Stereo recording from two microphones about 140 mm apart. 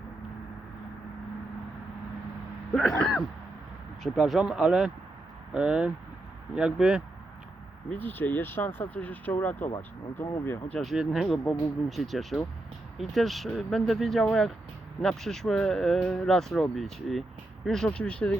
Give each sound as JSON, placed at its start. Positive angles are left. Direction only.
{"t": 4.0, "sound": "speech", "side_deg": 0}
{"t": 7.9, "sound": "speech", "side_deg": 15}
{"t": 10.8, "sound": "speech", "side_deg": 0}